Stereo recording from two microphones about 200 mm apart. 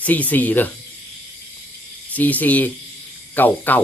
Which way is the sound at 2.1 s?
10° left (ahead or behind).